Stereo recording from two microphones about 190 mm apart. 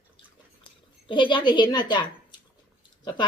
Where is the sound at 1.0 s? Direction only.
25° left (ahead or behind).